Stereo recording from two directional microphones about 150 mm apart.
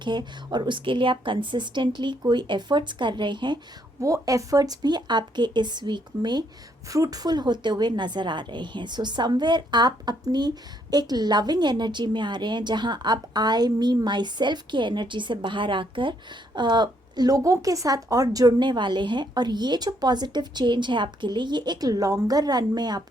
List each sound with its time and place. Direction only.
0.0 s a woman's voice: 30° right (ahead or behind)